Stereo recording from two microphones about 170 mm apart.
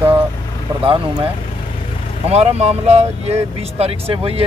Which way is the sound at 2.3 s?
40° right (ahead or behind).